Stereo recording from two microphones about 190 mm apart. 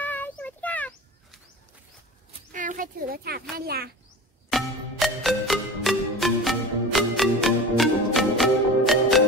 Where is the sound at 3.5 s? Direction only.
55° right (ahead or behind).